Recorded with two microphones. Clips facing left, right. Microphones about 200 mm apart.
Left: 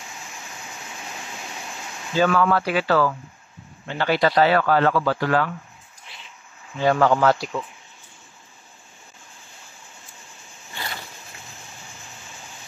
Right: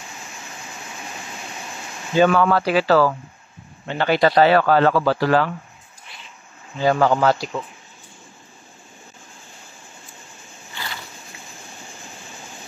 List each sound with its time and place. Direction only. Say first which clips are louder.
2.1 s a man's voice: right 3 dB; 25° right (ahead or behind)
3.8 s a man's voice: right 3 dB; 20° right (ahead or behind)
6.8 s speech: right 1 dB; 5° right (ahead or behind)